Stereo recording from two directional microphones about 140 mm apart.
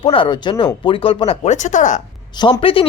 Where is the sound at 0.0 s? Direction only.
40° left (ahead or behind); by 2.0 s 60° left (ahead or behind).